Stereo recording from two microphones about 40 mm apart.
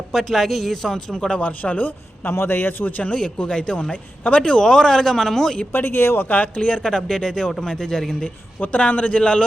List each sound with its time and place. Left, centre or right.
0.1 s speech: centre
0.9 s speech: centre
1.4 s a man's voice: left
2.3 s speech: left
3.2 s speech: left
4.6 s a man's voice: centre
5.7 s speech: left
6.6 s speech: left
6.8 s a man's voice: centre
8.6 s a man's voice: left